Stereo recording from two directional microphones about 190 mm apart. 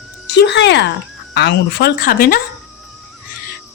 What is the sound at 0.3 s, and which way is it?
Speech, 65° left (ahead or behind).